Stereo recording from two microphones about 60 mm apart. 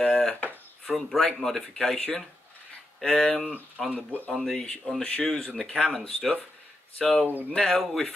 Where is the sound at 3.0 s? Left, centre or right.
Centre.